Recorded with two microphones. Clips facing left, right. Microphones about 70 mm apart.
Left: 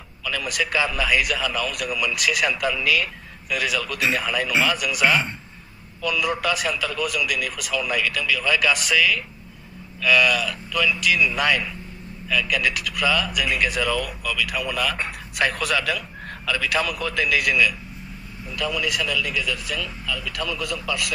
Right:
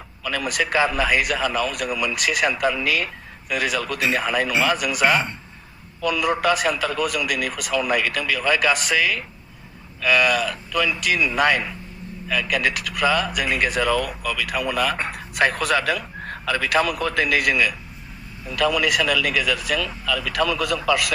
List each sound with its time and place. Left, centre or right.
0.2 s speech: right
18.4 s speech: right